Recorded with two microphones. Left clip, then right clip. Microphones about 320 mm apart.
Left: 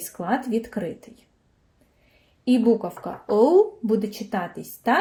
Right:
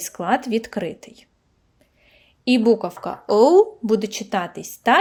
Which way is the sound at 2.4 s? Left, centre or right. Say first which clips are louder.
Right 3 dB; right.